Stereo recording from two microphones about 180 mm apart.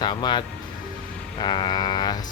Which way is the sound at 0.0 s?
25° left (ahead or behind).